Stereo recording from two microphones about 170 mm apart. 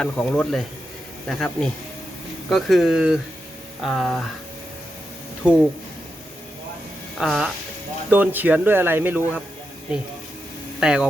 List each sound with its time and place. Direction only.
0.0 s speech: 5° left (ahead or behind)
5.4 s speech: 5° right (ahead or behind)
7.2 s speech: 5° right (ahead or behind)
10.8 s speech: 5° right (ahead or behind)